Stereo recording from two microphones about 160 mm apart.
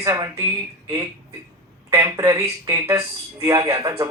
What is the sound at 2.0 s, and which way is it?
Speech, 20° right (ahead or behind).